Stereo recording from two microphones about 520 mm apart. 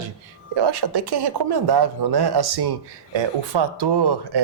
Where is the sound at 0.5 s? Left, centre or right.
Right.